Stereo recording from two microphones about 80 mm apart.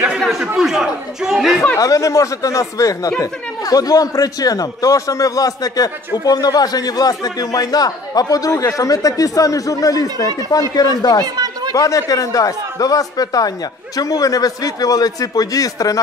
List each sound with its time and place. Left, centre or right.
0.2 s a sound: centre
0.6 s speech: centre
1.8 s a man's voice: left
11.3 s chatter: right
11.7 s a man's voice: left